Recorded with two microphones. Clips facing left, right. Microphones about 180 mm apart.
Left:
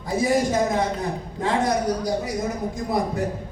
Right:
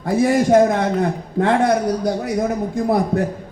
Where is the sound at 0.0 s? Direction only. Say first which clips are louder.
Right 5 dB; 60° right (ahead or behind).